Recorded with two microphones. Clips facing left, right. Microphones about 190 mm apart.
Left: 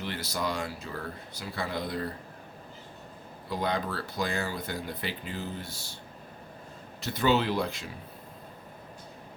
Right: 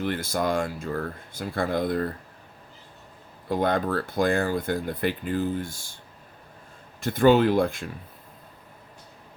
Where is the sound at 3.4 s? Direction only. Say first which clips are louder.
Right 7 dB; 50° right (ahead or behind).